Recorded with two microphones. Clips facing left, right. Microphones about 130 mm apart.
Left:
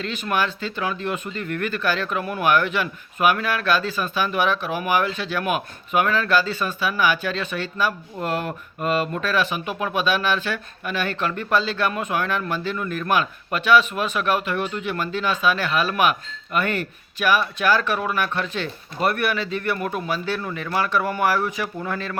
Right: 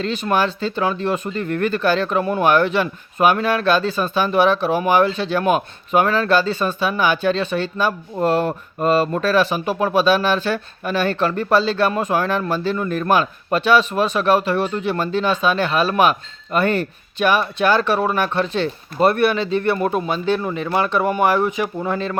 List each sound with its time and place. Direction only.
0.0 s speech: 30° right (ahead or behind)